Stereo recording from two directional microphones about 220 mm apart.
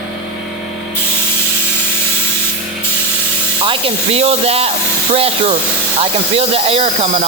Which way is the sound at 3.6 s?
25° right (ahead or behind).